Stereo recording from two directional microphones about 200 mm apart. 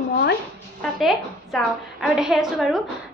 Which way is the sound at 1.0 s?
Centre (ahead or behind).